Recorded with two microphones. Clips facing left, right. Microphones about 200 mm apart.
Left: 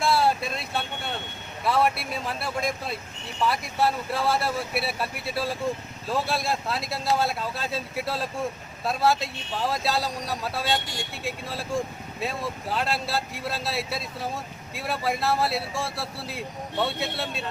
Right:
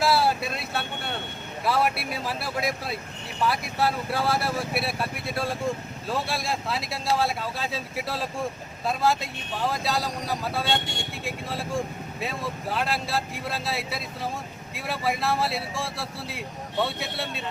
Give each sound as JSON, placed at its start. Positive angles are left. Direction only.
{"t": 0.0, "sound": "vehicle", "side_deg": -5}
{"t": 1.6, "sound": "speech", "side_deg": -5}